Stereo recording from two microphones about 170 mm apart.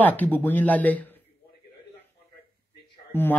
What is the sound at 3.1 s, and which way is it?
Speech, 15° left (ahead or behind).